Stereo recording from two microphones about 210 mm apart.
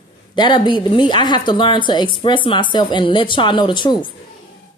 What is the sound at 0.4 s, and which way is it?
Speech, 20° left (ahead or behind).